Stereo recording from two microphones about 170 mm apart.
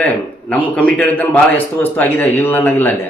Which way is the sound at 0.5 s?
10° left (ahead or behind).